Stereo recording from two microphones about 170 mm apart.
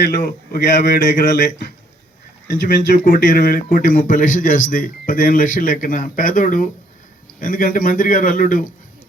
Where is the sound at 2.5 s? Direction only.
55° left (ahead or behind).